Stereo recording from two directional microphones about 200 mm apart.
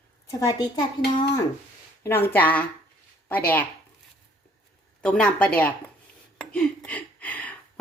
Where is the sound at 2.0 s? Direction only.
10° left (ahead or behind).